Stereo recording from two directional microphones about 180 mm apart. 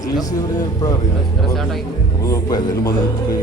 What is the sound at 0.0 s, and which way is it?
Speech, 20° left (ahead or behind).